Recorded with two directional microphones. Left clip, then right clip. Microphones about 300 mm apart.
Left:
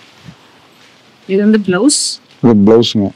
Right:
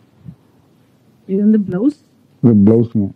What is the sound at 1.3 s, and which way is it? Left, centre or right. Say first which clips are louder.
Speech: left 5 dB; centre.